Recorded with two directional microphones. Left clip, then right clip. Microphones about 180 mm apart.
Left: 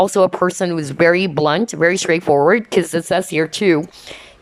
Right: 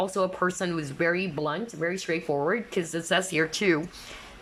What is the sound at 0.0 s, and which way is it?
Speech, 35° left (ahead or behind).